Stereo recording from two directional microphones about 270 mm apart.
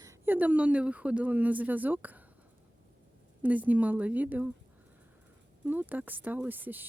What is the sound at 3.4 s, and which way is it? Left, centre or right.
Speech, centre.